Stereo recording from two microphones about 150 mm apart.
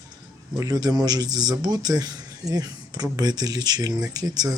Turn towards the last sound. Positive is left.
turn(degrees=-25)  # may be behind; listen again after turning